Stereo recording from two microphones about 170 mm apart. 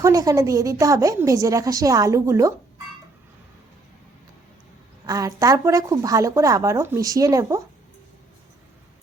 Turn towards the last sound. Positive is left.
turn(degrees=-20)  # may be behind; listen again after turning